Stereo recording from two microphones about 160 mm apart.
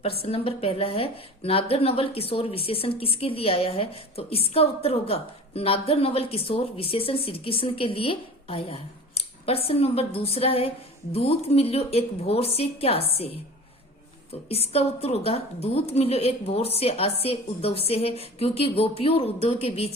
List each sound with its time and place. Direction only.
0.2 s a woman's voice: 35° left (ahead or behind)
14.4 s a woman's voice: 40° left (ahead or behind)